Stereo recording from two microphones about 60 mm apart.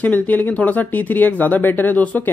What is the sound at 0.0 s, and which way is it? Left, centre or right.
A man's voice, left.